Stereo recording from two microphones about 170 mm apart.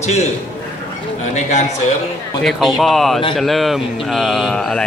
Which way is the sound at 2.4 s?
Centre (ahead or behind).